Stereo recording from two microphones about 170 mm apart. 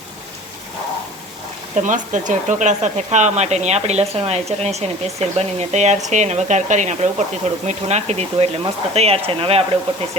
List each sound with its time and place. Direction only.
1.7 s speech: 50° right (ahead or behind)